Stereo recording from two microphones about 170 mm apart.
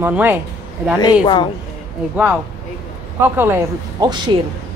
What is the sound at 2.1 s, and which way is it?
Speech, 10° right (ahead or behind).